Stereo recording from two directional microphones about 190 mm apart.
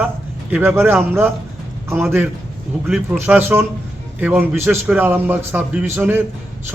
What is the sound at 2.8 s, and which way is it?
A man's voice, 5° right (ahead or behind).